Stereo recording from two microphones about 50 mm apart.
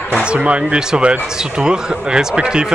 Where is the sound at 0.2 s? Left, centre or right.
Right.